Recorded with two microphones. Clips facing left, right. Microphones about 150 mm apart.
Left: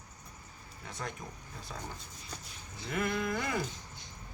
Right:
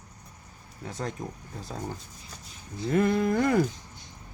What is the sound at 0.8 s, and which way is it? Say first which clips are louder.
Speech: right 7 dB; 35° right (ahead or behind).